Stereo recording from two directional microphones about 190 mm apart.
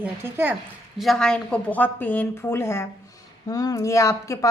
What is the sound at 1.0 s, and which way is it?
Speech, centre (ahead or behind).